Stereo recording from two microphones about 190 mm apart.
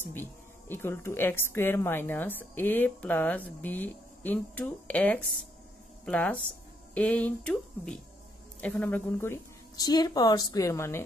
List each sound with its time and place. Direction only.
0.1 s a woman's voice: 10° left (ahead or behind)